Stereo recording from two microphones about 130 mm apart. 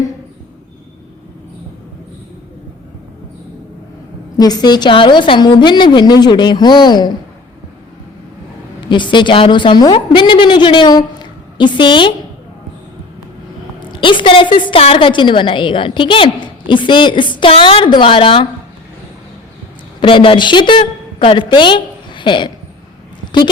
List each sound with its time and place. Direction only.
4.4 s a woman's voice: 30° left (ahead or behind)
8.9 s a woman's voice: 35° left (ahead or behind)
13.7 s a woman's voice: 35° left (ahead or behind)
20.0 s a woman's voice: 40° left (ahead or behind)